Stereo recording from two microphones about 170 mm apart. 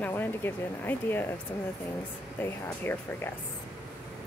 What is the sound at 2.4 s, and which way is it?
Speech, 15° left (ahead or behind).